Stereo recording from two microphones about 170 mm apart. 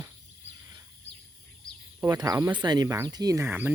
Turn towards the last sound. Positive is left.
turn(degrees=-10)  # may be behind; listen again after turning